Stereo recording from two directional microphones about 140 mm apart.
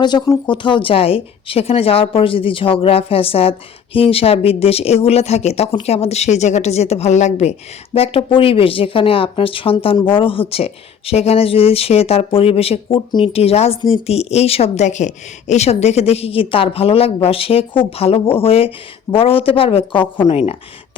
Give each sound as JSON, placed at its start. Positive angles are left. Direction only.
{"t": 0.0, "sound": "a woman's voice", "side_deg": 30}
{"t": 7.9, "sound": "a woman's voice", "side_deg": 45}
{"t": 20.2, "sound": "a woman's voice", "side_deg": 45}